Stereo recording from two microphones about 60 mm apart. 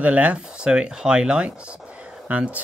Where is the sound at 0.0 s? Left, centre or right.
Right.